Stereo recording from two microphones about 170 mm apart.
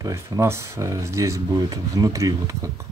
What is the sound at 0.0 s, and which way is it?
Speech, 15° right (ahead or behind).